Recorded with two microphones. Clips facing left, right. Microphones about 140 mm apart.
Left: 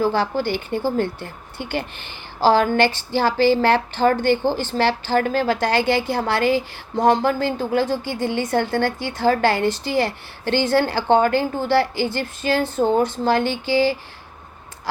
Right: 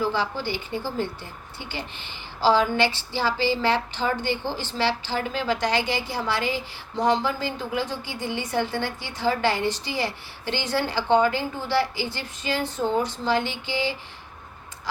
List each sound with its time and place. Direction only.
0.0 s a woman's voice: 55° left (ahead or behind)